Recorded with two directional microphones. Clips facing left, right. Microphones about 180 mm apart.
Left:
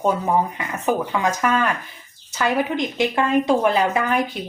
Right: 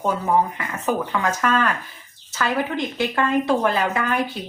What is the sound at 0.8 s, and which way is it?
A woman's voice, 15° left (ahead or behind).